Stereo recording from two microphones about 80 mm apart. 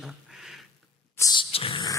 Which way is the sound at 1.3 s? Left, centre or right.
Left.